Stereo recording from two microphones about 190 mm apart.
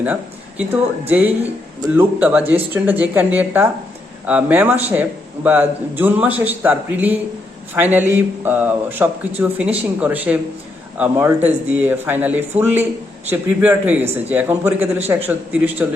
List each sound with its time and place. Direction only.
0.0 s speech: 10° right (ahead or behind)